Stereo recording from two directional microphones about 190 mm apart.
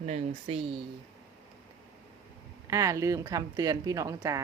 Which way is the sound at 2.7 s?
15° right (ahead or behind).